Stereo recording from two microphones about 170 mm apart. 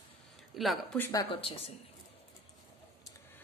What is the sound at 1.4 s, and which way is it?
Speech, 30° left (ahead or behind).